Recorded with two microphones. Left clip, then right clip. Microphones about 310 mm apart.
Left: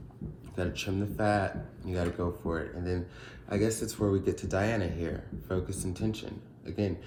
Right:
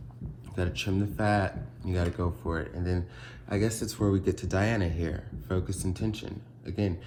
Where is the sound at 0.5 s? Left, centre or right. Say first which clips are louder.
Right 2 dB; right.